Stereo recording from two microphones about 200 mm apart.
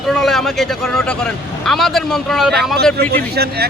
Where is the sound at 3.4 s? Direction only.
55° right (ahead or behind).